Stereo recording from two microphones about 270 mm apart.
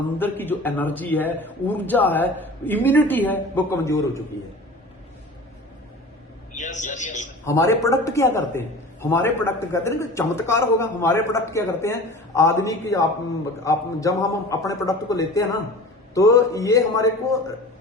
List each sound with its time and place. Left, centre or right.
0.2 s a man's voice: centre
6.5 s a man's voice: left
7.4 s a man's voice: centre